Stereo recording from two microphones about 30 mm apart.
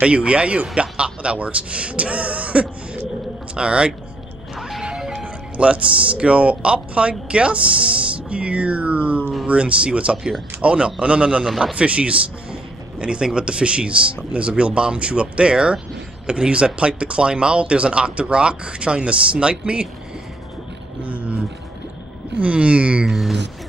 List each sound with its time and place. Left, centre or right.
0.0 s speech: right
3.5 s speech: right
4.6 s music: centre
5.2 s speech: right
13.0 s speech: right
21.0 s a sound: right
22.4 s speech: right